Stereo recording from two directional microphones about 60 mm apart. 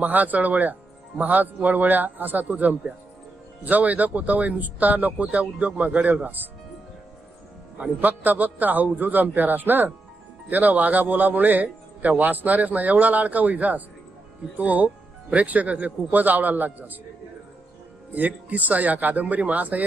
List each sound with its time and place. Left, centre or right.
0.0 s a man's voice: right
7.7 s a man's voice: right
18.1 s a man's voice: right